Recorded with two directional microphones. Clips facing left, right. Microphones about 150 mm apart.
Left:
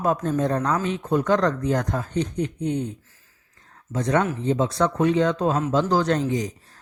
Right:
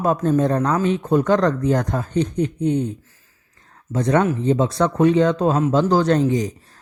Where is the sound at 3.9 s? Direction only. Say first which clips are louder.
Right 4 dB; 35° right (ahead or behind).